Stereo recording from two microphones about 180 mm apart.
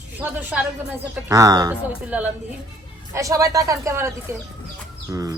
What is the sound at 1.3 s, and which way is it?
Speech, 20° right (ahead or behind).